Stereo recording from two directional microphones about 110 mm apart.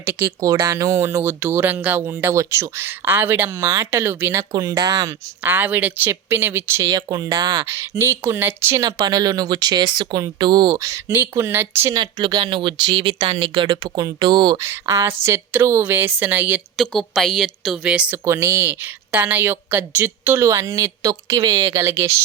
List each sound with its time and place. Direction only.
0.0 s speech: 25° right (ahead or behind)
4.5 s speech: 35° right (ahead or behind)
5.4 s speech: 15° right (ahead or behind)
6.9 s speech: 35° right (ahead or behind)
7.6 s speech: 25° right (ahead or behind)
8.8 s speech: 35° right (ahead or behind)
11.1 s speech: 20° right (ahead or behind)
11.9 s speech: 40° right (ahead or behind)
13.8 s speech: 35° right (ahead or behind)
14.6 s speech: 25° right (ahead or behind)
16.7 s a woman's voice: 5° left (ahead or behind)
17.9 s speech: 10° right (ahead or behind)
18.3 s speech: 25° right (ahead or behind)
21.8 s speech: 25° right (ahead or behind)